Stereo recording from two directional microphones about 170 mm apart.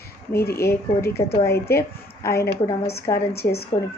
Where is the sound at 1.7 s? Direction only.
15° left (ahead or behind).